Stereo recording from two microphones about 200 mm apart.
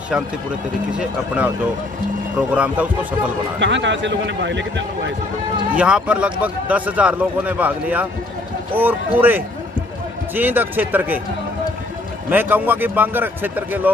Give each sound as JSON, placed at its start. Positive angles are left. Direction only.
{"t": 0.9, "sound": "speech", "side_deg": -5}
{"t": 2.5, "sound": "speech", "side_deg": -5}
{"t": 3.5, "sound": "speech", "side_deg": -65}
{"t": 5.8, "sound": "speech", "side_deg": -5}
{"t": 12.3, "sound": "speech", "side_deg": -10}